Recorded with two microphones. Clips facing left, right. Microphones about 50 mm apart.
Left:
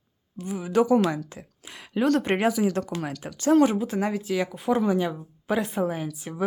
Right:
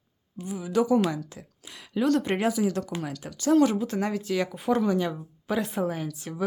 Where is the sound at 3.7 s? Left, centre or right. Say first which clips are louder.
Left 1 dB; centre.